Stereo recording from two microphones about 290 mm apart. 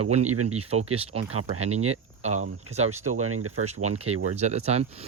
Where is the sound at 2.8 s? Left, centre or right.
Right.